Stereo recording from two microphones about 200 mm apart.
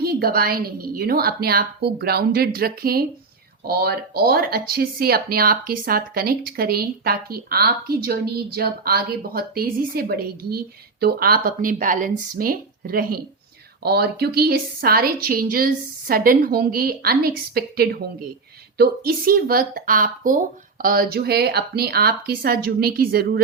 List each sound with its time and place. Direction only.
0.0 s speech: 50° right (ahead or behind)